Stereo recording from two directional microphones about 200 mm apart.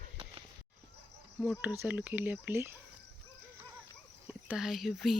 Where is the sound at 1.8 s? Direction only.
10° right (ahead or behind).